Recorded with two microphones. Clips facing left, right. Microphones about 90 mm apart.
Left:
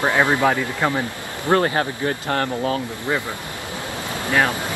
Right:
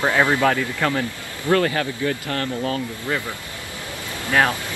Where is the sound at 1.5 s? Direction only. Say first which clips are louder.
Left 1 dB; 30° left (ahead or behind).